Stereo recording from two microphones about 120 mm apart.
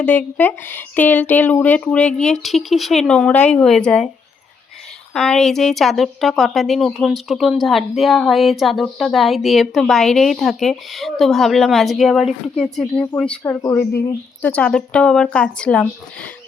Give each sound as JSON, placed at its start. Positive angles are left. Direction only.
{"t": 0.0, "sound": "speech", "side_deg": 10}
{"t": 5.1, "sound": "a woman's voice", "side_deg": 5}
{"t": 13.4, "sound": "speech", "side_deg": 25}
{"t": 14.4, "sound": "speech", "side_deg": 10}